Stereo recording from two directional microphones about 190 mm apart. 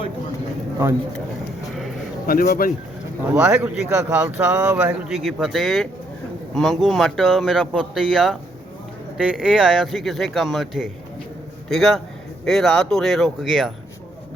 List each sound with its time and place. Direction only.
2.2 s speech: 50° left (ahead or behind)
3.3 s speech: 5° right (ahead or behind)